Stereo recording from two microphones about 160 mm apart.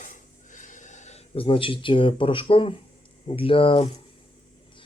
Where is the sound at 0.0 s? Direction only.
55° left (ahead or behind); by 2.7 s 35° left (ahead or behind).